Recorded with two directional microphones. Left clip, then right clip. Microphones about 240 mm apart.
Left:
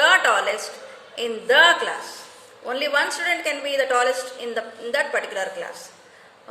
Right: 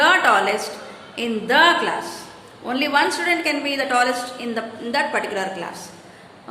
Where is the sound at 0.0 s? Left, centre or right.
Centre.